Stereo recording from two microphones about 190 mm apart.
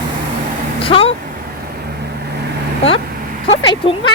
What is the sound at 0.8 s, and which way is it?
Vehicle, 30° left (ahead or behind).